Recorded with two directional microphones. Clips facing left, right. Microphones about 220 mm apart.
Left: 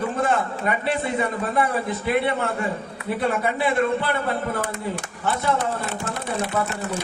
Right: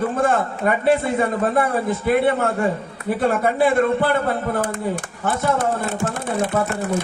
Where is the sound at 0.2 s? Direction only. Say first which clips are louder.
Right 3 dB; 45° right (ahead or behind).